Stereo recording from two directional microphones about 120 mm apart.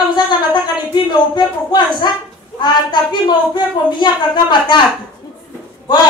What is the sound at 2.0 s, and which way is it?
A woman's voice, 35° left (ahead or behind).